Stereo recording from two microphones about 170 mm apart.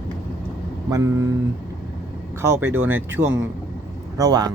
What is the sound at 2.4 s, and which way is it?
Speech, 15° right (ahead or behind).